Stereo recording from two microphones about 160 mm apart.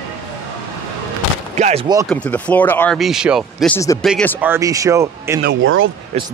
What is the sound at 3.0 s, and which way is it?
Speech, 5° right (ahead or behind).